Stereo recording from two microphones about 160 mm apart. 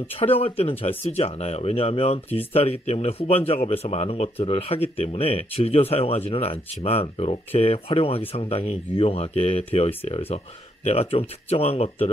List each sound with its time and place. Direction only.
0.2 s speech: 40° left (ahead or behind)